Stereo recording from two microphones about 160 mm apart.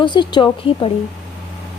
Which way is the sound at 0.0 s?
30° left (ahead or behind).